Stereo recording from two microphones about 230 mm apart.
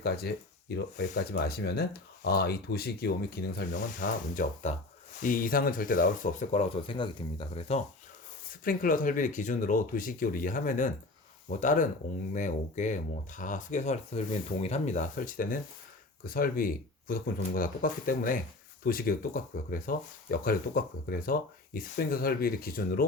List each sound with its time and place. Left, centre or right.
0.0 s speech: left
8.6 s speech: left